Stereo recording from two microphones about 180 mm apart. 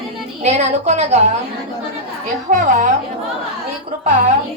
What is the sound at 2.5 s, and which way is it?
Speech, 45° right (ahead or behind).